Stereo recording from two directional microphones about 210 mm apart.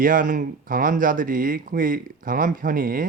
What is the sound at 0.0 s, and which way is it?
Speech, 40° right (ahead or behind).